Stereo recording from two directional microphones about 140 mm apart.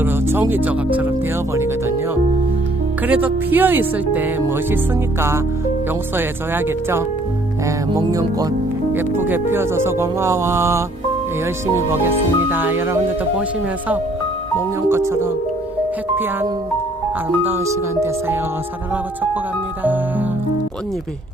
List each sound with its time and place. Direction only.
0.0 s speech: 15° right (ahead or behind)
3.1 s speech: 15° right (ahead or behind)
6.1 s speech: 15° right (ahead or behind)
14.8 s speech: 20° right (ahead or behind)